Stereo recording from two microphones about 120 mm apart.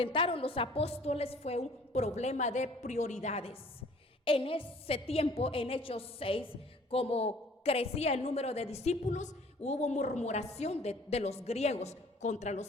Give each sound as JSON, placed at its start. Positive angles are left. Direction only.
{"t": 0.0, "sound": "a woman's voice", "side_deg": 45}